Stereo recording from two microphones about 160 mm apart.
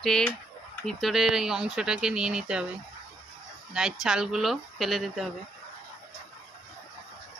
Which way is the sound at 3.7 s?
5° right (ahead or behind).